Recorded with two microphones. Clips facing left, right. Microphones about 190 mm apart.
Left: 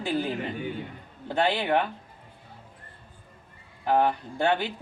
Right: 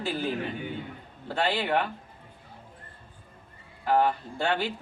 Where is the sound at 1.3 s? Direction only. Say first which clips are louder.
Left 2 dB; 15° left (ahead or behind).